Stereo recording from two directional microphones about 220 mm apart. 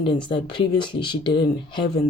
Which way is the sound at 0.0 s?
20° left (ahead or behind).